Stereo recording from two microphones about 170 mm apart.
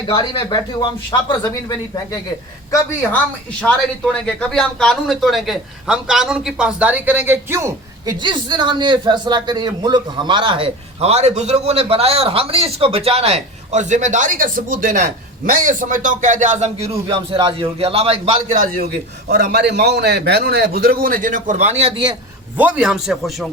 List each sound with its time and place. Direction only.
0.1 s speech: 30° left (ahead or behind)
3.6 s speech: 5° left (ahead or behind); by 8.1 s 15° right (ahead or behind)
8.2 s speech: 25° right (ahead or behind)
18.5 s a man's voice: 55° right (ahead or behind)
19.3 s a man's voice: 80° right; by 22.1 s 30° right (ahead or behind)
22.5 s speech: 10° right (ahead or behind)